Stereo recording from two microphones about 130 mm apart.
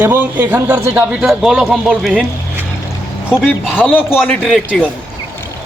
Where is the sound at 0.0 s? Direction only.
15° right (ahead or behind).